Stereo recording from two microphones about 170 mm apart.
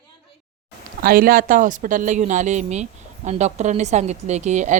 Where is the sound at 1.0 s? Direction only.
60° right (ahead or behind).